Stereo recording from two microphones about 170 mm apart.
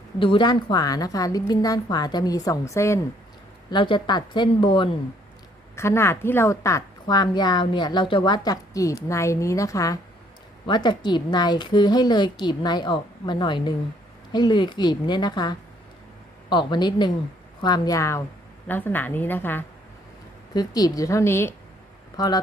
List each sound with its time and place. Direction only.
0.2 s a woman's voice: 30° left (ahead or behind)
3.7 s a woman's voice: 30° left (ahead or behind)
5.7 s a woman's voice: 15° left (ahead or behind)
20.5 s a woman's voice: 25° left (ahead or behind)